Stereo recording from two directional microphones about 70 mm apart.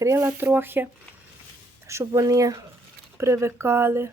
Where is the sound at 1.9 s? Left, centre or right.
Right.